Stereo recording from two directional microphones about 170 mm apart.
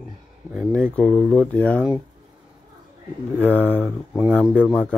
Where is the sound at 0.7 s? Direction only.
Centre (ahead or behind).